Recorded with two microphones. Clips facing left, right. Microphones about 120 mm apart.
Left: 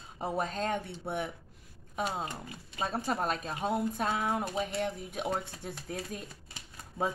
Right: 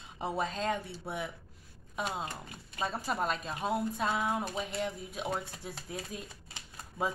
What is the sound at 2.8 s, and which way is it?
Speech, 45° left (ahead or behind).